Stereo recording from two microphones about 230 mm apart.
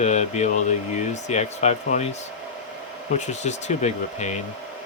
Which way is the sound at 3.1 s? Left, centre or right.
Left.